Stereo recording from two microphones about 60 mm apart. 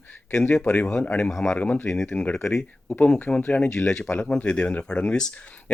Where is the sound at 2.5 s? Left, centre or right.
Centre.